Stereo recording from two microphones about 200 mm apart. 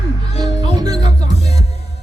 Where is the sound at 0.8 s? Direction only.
20° right (ahead or behind).